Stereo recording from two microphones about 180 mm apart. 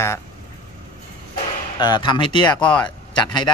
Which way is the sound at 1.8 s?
25° left (ahead or behind).